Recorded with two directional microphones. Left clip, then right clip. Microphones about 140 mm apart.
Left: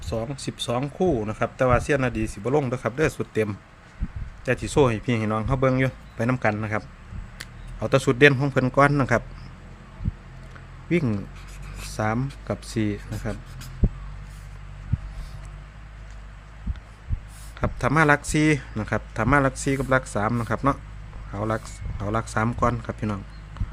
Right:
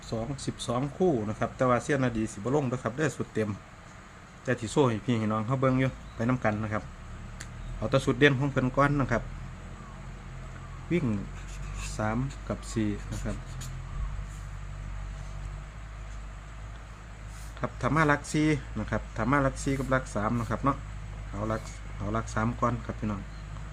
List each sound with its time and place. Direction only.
0.0 s a man's voice: 90° left
10.9 s speech: 90° left
17.6 s speech: 90° left
22.0 s speech: 90° left